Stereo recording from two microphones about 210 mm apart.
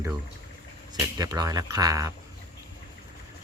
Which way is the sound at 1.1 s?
15° right (ahead or behind).